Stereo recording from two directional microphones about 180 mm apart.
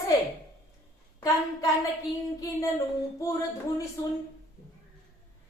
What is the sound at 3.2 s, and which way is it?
Speech, 15° left (ahead or behind).